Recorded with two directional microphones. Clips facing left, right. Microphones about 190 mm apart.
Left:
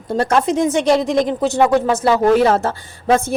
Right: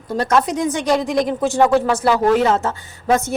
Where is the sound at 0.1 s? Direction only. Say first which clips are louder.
Left 2 dB; 30° left (ahead or behind).